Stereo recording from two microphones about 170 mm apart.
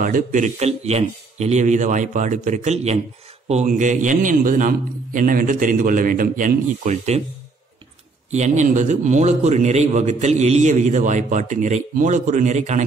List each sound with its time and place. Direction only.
0.0 s a man's voice: 50° right (ahead or behind)
8.3 s a man's voice: 45° right (ahead or behind)